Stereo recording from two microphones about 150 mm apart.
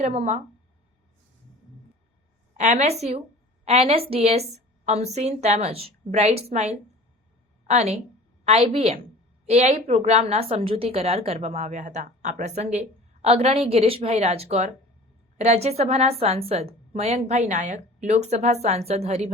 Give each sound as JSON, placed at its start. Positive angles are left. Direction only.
{"t": 0.0, "sound": "a woman's voice", "side_deg": -50}
{"t": 2.6, "sound": "a woman's voice", "side_deg": -45}